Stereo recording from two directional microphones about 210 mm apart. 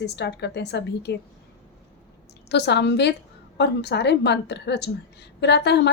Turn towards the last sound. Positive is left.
turn(degrees=55)  # may be behind; listen again after turning